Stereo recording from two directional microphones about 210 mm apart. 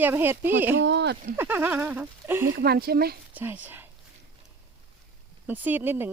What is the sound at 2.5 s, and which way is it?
Speech, 45° right (ahead or behind).